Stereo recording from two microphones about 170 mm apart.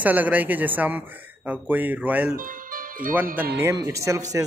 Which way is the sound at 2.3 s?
55° right (ahead or behind).